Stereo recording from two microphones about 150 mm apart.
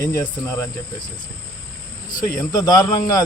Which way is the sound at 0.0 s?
20° left (ahead or behind).